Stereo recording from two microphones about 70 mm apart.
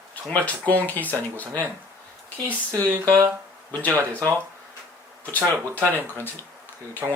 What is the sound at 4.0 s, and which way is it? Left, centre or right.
Speech, right.